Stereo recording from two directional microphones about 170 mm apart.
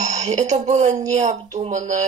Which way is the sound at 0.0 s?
45° right (ahead or behind).